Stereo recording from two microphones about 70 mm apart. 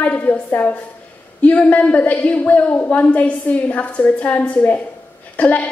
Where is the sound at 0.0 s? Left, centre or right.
Left.